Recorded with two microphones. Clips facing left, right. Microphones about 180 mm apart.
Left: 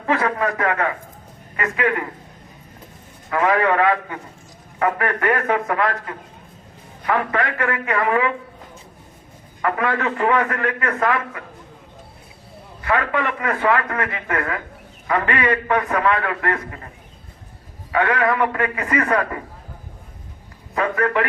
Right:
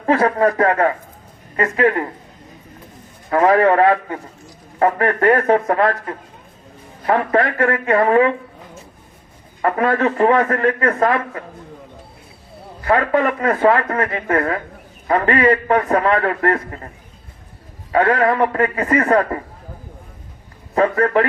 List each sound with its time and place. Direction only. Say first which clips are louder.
0.0 s a man's voice: right 6 dB; 35° right (ahead or behind)
3.2 s a man's voice: right 5 dB; 35° right (ahead or behind)
9.6 s a man's voice: right 5 dB; 35° right (ahead or behind)
12.8 s a man's voice: right 5 dB; 35° right (ahead or behind)
17.9 s a man's voice: right 4 dB; 35° right (ahead or behind)
20.7 s a man's voice: right 5 dB; 35° right (ahead or behind)